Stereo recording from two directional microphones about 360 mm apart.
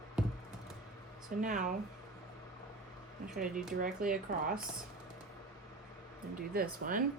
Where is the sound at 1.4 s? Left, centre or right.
Right.